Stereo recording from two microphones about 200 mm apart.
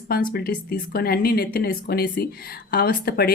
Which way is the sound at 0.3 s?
50° left (ahead or behind).